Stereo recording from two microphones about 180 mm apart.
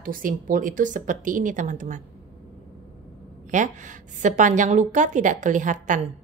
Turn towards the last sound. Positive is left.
turn(degrees=-45)  # may be behind; listen again after turning